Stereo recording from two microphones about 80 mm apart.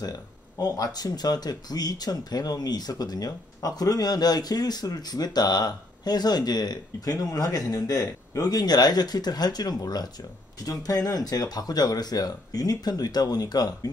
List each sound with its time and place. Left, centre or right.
0.0 s speech: left